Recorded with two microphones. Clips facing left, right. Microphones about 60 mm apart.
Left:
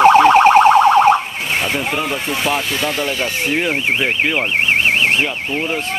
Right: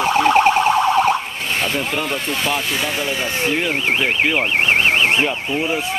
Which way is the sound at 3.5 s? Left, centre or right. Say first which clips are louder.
Left 2 dB; centre.